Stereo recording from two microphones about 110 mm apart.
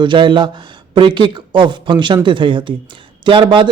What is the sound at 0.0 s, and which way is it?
A man's voice, 45° right (ahead or behind).